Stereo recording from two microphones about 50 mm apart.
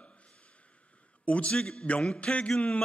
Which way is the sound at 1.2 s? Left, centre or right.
Left.